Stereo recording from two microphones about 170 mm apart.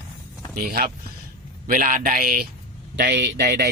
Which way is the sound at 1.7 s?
50° right (ahead or behind).